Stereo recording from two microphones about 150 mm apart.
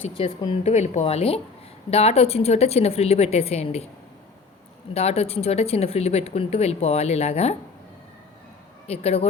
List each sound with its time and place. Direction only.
0.0 s speech: 35° left (ahead or behind)
0.6 s speech: 50° left (ahead or behind)
4.9 s speech: 45° left (ahead or behind)
8.9 s speech: 45° left (ahead or behind)